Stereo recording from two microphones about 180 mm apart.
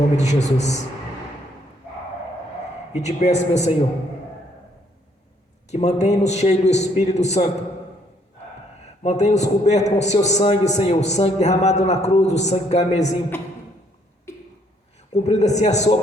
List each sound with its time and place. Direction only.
0.2 s a man's voice: 40° left (ahead or behind)
2.9 s a man's voice: 40° left (ahead or behind)
5.7 s a man's voice: 40° left (ahead or behind)
9.0 s a man's voice: 40° left (ahead or behind)
15.1 s a man's voice: 40° left (ahead or behind)